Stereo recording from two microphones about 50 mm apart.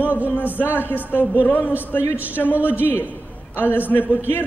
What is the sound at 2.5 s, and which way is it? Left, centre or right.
Speech, right.